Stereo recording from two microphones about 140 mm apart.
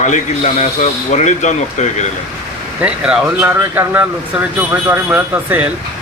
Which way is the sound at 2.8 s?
10° right (ahead or behind).